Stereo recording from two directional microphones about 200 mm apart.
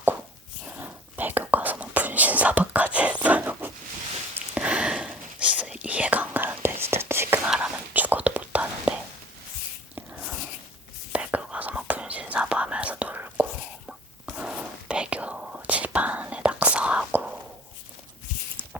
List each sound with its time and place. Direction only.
0.7 s whispering: 10° right (ahead or behind)
9.9 s a sound: 5° right (ahead or behind)
11.1 s whispering: 5° right (ahead or behind)